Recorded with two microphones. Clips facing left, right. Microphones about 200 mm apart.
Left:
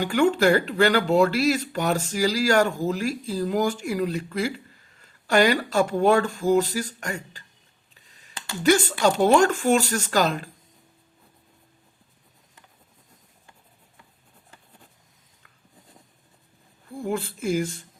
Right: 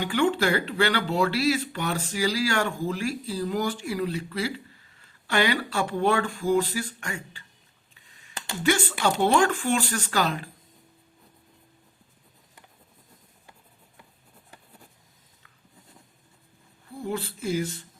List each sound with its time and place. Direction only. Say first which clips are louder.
0.0 s speech: left 4 dB; 45° left (ahead or behind)
8.6 s speech: left 5 dB; 40° left (ahead or behind)
17.1 s speech: left 3 dB; 50° left (ahead or behind)